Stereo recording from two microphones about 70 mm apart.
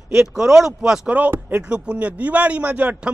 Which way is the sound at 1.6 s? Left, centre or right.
Centre.